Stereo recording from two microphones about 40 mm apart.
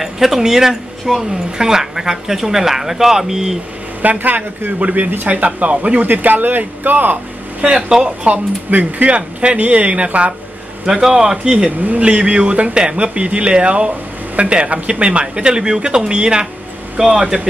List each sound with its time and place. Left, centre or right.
0.0 s speech: centre
4.0 s speech: right
7.7 s speech: right
8.6 s speech: right
10.9 s speech: centre